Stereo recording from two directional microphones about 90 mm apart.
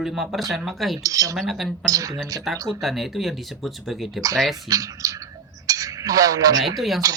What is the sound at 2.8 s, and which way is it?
Speech, centre (ahead or behind).